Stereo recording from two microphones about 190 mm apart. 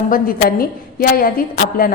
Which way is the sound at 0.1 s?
50° left (ahead or behind).